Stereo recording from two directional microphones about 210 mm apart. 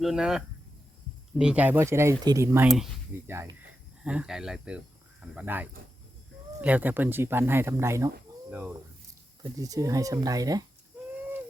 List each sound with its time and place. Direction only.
0.0 s speech: centre (ahead or behind)